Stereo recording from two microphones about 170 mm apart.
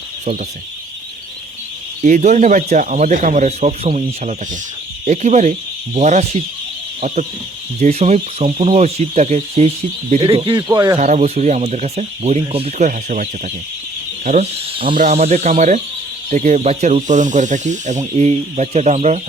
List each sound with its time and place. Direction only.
2.0 s speech: 45° right (ahead or behind)
7.8 s speech: 40° right (ahead or behind)
10.9 s speech: 45° right (ahead or behind)
14.9 s speech: 45° right (ahead or behind)